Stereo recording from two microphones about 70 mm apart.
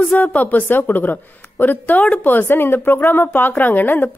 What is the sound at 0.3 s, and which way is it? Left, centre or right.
A woman's voice, left.